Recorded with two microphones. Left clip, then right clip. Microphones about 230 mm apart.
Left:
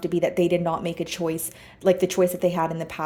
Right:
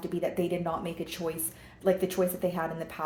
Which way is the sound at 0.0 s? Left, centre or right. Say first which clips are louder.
Left 8 dB; left.